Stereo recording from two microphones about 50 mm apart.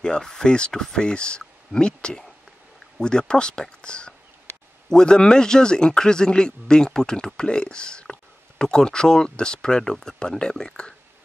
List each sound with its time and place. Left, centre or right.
0.0 s speech: centre